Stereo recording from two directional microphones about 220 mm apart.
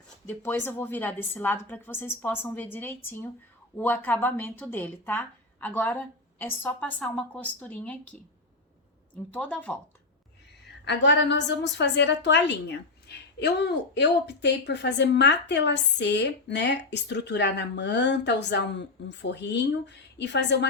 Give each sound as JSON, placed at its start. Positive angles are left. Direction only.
{"t": 0.3, "sound": "a woman's voice", "side_deg": 10}
{"t": 9.1, "sound": "a woman's voice", "side_deg": 5}
{"t": 10.8, "sound": "a woman's voice", "side_deg": 50}